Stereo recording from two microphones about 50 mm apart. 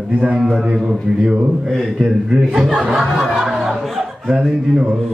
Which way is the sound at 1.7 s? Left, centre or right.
Centre.